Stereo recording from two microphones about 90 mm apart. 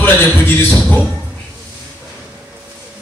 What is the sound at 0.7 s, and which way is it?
Speech, 15° left (ahead or behind).